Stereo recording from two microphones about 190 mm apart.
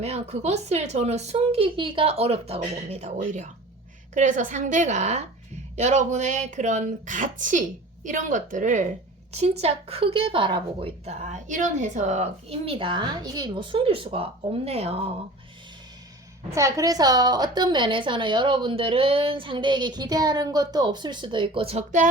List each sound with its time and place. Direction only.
0.0 s a woman's voice: 35° right (ahead or behind)
16.6 s speech: 15° right (ahead or behind); by 22.0 s 30° right (ahead or behind)